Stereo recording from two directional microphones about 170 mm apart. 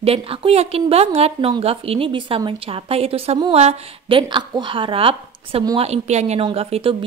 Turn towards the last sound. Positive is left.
turn(degrees=-30)  # may be behind; listen again after turning